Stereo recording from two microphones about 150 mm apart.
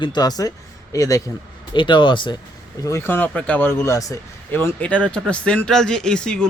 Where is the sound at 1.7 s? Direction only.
30° left (ahead or behind).